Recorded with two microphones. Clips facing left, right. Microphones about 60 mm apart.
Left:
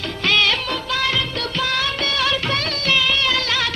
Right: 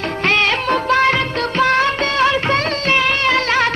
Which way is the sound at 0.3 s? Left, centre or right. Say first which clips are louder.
Right 3 dB; right.